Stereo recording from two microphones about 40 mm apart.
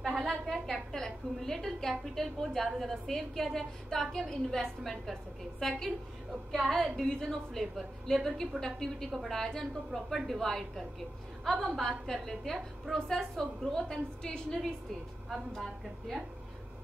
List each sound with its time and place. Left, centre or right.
0.2 s a sound: centre
0.7 s a woman's voice: centre
7.1 s a woman's voice: centre
7.5 s a woman's voice: centre
12.1 s a woman's voice: centre
15.2 s a woman's voice: centre